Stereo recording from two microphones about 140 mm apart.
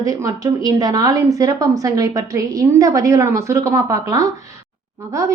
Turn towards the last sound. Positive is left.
turn(degrees=-20)  # may be behind; listen again after turning